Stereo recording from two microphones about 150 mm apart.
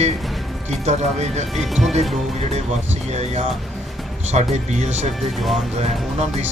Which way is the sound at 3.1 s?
50° right (ahead or behind).